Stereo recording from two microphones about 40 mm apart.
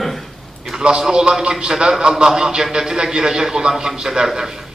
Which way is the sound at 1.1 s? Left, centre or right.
Centre.